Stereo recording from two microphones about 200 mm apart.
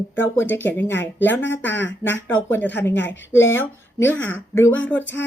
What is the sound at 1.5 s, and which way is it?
Speech, 65° left (ahead or behind).